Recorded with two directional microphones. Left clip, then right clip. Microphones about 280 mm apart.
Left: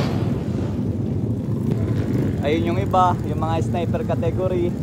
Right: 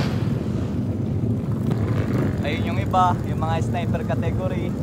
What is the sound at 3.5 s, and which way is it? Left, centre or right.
Speech, centre.